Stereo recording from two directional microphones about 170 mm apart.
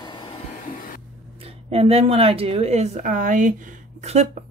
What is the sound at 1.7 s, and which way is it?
A woman's voice, 35° right (ahead or behind).